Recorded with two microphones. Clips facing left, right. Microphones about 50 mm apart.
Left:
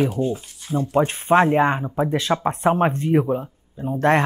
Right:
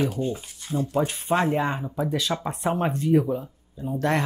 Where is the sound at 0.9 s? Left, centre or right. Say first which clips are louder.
Left 7 dB; left.